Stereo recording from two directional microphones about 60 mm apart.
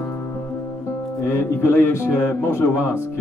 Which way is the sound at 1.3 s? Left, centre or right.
Left.